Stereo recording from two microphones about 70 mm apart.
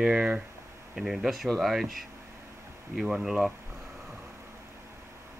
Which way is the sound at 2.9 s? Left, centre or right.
Centre.